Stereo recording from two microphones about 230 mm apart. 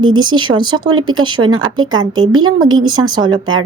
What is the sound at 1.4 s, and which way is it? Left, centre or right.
Speech, right.